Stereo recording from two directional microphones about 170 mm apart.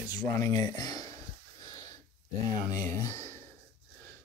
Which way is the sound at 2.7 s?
20° left (ahead or behind).